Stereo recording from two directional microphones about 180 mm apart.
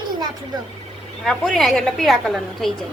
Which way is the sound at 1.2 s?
Centre (ahead or behind).